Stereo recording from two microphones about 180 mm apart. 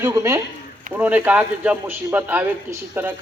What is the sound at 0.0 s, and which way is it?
A man's voice, 15° right (ahead or behind).